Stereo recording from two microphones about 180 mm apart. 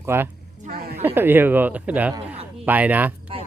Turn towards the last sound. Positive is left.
turn(degrees=-10)  # may be behind; listen again after turning